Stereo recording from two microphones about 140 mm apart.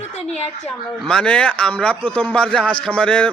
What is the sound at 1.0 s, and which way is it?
A man's voice, 5° left (ahead or behind).